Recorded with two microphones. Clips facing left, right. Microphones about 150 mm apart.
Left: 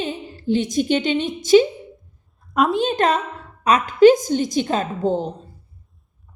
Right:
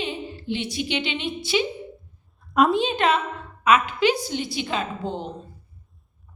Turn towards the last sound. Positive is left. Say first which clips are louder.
# left 7 dB
turn(degrees=40)  # may be behind; listen again after turning